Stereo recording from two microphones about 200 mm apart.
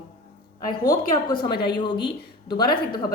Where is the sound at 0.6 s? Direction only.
20° left (ahead or behind).